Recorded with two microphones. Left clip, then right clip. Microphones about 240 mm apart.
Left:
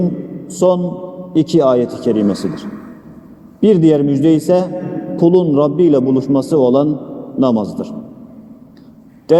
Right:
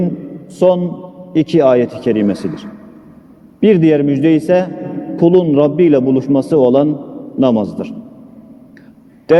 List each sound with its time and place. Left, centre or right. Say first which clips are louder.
0.4 s a man's voice: right 1 dB; right